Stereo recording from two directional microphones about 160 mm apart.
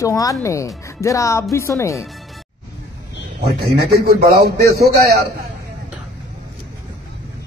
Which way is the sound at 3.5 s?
70° right (ahead or behind).